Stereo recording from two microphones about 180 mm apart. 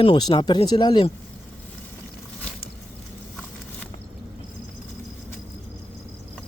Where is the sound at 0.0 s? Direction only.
25° left (ahead or behind).